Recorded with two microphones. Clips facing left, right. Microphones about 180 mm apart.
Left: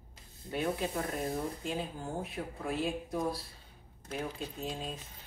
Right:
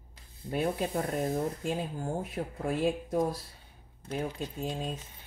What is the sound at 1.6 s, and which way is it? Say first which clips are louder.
Speech: right 4 dB; 45° right (ahead or behind).